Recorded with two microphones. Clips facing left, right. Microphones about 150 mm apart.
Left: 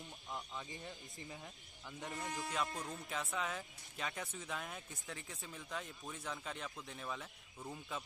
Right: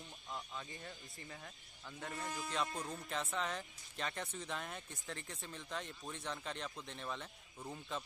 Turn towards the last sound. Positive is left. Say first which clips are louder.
# right 1 dB
turn(degrees=0)  # may be behind; listen again after turning